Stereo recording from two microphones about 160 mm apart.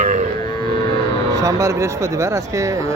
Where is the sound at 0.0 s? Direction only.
55° right (ahead or behind).